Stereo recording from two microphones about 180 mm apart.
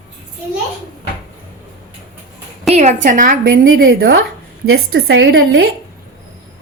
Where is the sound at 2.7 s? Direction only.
40° right (ahead or behind).